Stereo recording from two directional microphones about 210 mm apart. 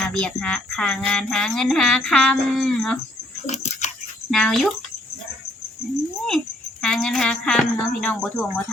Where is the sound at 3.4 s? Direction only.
35° left (ahead or behind).